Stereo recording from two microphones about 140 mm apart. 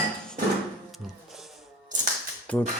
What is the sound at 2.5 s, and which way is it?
Speech, 10° left (ahead or behind).